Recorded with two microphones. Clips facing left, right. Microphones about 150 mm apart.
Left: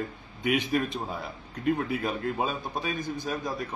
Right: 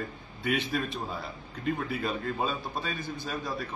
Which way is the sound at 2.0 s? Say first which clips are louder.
Left 2 dB; 10° left (ahead or behind).